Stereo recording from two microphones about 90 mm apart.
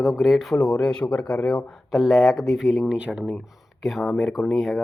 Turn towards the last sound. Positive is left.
turn(degrees=-5)  # may be behind; listen again after turning